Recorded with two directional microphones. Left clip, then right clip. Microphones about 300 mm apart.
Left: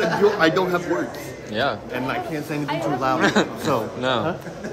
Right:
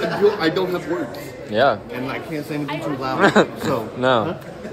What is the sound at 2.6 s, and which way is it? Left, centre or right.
Speech, left.